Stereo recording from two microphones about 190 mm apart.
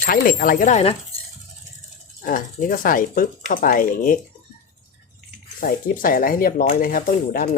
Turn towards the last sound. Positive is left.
turn(degrees=50)  # may be behind; listen again after turning